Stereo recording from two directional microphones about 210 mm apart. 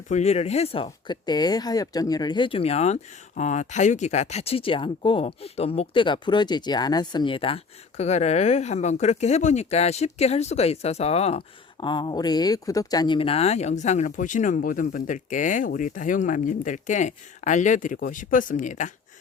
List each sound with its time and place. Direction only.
0.1 s speech: 30° left (ahead or behind)